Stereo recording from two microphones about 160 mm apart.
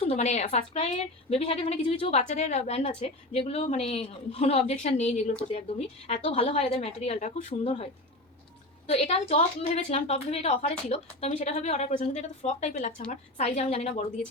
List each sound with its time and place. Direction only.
0.0 s a woman's voice: 40° left (ahead or behind)
8.9 s a woman's voice: 40° left (ahead or behind)